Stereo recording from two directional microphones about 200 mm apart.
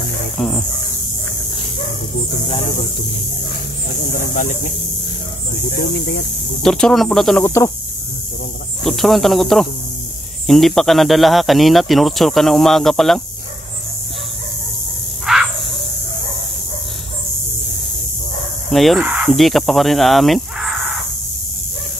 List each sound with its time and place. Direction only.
0.4 s a sound: centre (ahead or behind)
4.0 s speech: 45° left (ahead or behind)
5.7 s speech: 60° left (ahead or behind)
6.6 s speech: 5° left (ahead or behind)
8.8 s speech: centre (ahead or behind)
15.2 s a sound: centre (ahead or behind)
18.7 s speech: centre (ahead or behind)